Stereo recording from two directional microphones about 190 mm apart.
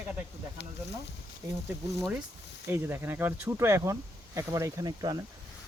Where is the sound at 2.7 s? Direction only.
10° right (ahead or behind).